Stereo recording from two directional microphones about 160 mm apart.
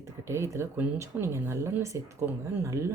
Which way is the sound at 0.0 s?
20° right (ahead or behind).